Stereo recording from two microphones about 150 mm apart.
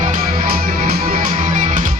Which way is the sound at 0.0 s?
70° right (ahead or behind).